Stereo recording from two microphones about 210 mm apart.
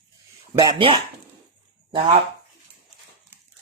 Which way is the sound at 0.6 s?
20° right (ahead or behind).